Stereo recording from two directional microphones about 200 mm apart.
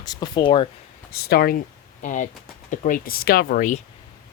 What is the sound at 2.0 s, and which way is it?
Speech, 40° left (ahead or behind).